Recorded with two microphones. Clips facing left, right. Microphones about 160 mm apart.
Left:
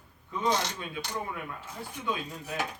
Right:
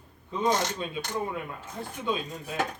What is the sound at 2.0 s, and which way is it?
Speech, 25° right (ahead or behind).